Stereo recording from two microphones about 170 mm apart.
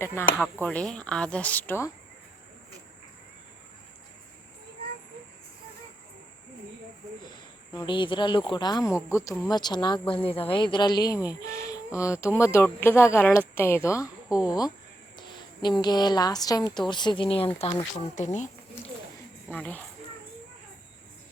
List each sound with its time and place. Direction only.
0.0 s speech: 15° left (ahead or behind)
7.3 s a woman's voice: 25° left (ahead or behind)
17.9 s speech: 45° left (ahead or behind)
19.5 s speech: 10° left (ahead or behind)